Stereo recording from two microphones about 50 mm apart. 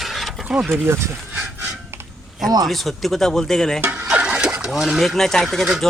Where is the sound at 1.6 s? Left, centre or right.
Right.